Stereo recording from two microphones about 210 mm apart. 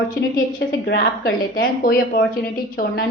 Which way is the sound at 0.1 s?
40° left (ahead or behind).